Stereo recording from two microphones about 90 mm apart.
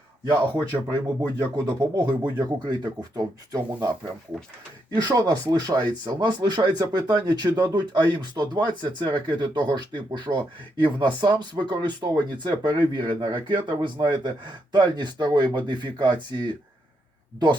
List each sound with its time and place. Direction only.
0.5 s speech: 40° right (ahead or behind)
4.9 s speech: 50° right (ahead or behind)